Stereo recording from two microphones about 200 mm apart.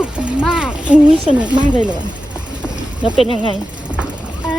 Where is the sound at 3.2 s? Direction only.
25° left (ahead or behind).